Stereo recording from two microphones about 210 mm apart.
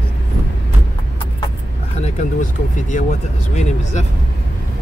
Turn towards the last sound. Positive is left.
turn(degrees=35)  # may be behind; listen again after turning